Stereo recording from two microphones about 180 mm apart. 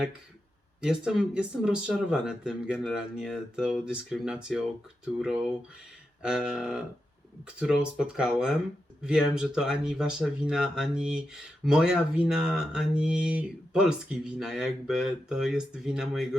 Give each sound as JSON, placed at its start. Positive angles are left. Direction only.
{"t": 0.8, "sound": "speech", "side_deg": -5}
{"t": 6.2, "sound": "speech", "side_deg": -5}